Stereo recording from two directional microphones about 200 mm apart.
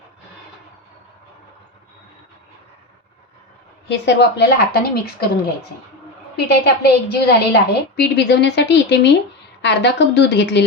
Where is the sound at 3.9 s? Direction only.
60° left (ahead or behind).